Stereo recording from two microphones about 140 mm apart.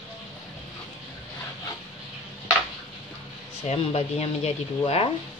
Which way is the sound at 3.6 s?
50° left (ahead or behind).